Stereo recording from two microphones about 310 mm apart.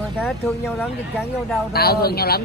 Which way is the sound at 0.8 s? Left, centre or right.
Centre.